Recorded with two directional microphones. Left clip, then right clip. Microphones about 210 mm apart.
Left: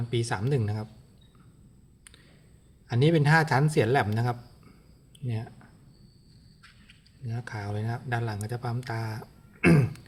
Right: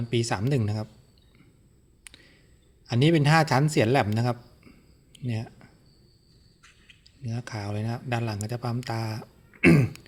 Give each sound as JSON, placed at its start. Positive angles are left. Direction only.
{"t": 0.1, "sound": "speech", "side_deg": -25}
{"t": 2.8, "sound": "speech", "side_deg": -25}
{"t": 7.3, "sound": "speech", "side_deg": -25}